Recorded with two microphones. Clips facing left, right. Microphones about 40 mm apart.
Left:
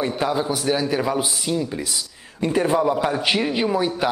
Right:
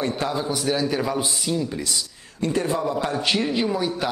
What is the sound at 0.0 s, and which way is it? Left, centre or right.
A man's voice, centre.